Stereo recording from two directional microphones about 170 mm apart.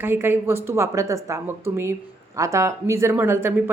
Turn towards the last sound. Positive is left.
turn(degrees=-15)  # may be behind; listen again after turning